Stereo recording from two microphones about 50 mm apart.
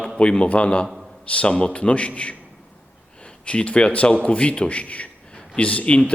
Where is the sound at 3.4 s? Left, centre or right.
Left.